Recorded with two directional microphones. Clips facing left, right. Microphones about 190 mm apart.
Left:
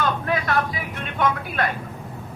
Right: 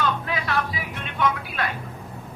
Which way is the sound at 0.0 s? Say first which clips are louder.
Left 3 dB; 50° left (ahead or behind).